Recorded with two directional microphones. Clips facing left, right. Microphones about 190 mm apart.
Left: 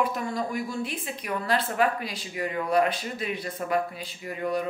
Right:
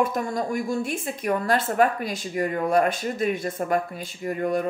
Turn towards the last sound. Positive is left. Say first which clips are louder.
# right 4 dB
turn(degrees=-45)  # may be behind; listen again after turning